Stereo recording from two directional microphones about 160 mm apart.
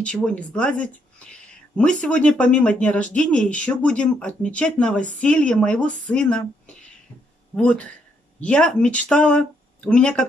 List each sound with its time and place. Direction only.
0.0 s speech: 5° left (ahead or behind)
7.5 s speech: 10° left (ahead or behind)